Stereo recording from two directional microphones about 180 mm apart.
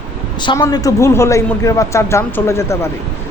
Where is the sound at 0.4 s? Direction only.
20° left (ahead or behind).